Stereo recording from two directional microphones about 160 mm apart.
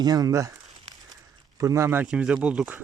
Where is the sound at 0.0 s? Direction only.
25° right (ahead or behind).